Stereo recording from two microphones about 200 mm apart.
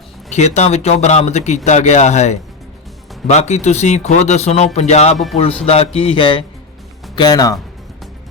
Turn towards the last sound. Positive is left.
turn(degrees=20)  # may be behind; listen again after turning